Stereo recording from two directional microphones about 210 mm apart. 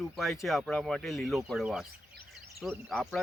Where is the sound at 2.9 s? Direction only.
Centre (ahead or behind).